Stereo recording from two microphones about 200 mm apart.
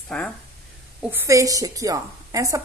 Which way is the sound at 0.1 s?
5° left (ahead or behind).